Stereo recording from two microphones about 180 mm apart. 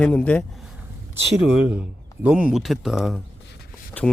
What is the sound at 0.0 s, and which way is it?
Speech, 5° left (ahead or behind).